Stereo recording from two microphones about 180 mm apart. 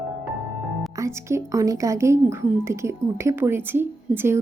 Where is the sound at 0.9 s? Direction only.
15° right (ahead or behind).